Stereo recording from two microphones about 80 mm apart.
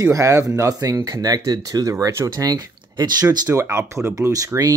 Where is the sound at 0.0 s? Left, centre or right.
Right.